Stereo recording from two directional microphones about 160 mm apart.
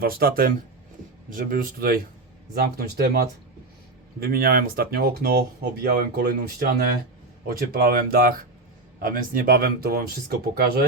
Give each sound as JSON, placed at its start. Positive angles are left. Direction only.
{"t": 0.0, "sound": "speech", "side_deg": -70}